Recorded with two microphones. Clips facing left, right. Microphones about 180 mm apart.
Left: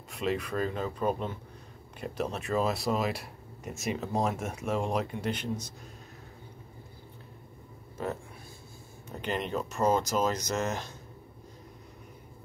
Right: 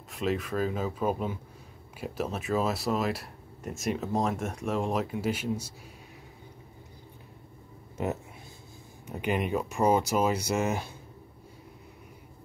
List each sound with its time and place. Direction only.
0.1 s speech: centre (ahead or behind)
8.0 s speech: 20° right (ahead or behind)